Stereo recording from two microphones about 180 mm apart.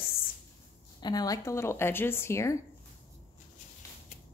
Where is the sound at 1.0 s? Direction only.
20° left (ahead or behind).